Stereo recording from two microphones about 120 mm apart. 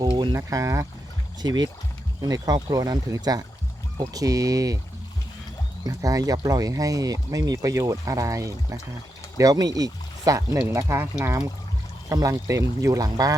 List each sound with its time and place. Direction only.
0.0 s a sound: 40° right (ahead or behind)
0.3 s speech: 25° right (ahead or behind)
1.4 s speech: 35° right (ahead or behind)
5.8 s speech: 30° right (ahead or behind)